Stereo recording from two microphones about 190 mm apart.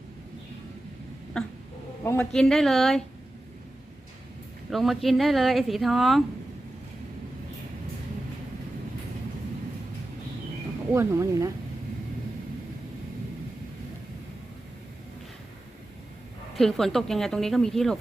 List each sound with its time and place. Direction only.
1.4 s a woman's voice: 5° left (ahead or behind)
4.7 s a woman's voice: centre (ahead or behind)
10.9 s speech: 15° right (ahead or behind)
16.6 s a woman's voice: centre (ahead or behind)